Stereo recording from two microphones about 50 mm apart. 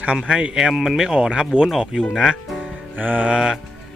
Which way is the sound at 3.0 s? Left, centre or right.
Right.